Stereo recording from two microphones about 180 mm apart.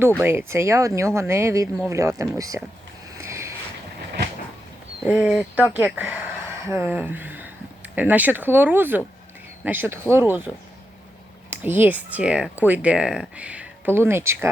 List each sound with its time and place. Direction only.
0.2 s speech: 15° right (ahead or behind)
3.2 s boat: 15° right (ahead or behind)
5.0 s speech: 10° right (ahead or behind)
11.5 s speech: 10° right (ahead or behind)